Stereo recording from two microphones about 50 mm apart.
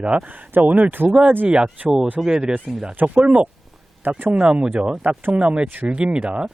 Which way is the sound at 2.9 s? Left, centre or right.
Right.